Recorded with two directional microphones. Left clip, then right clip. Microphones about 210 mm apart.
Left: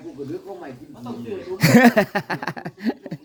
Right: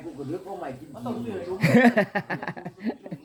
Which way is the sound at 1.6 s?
40° left (ahead or behind).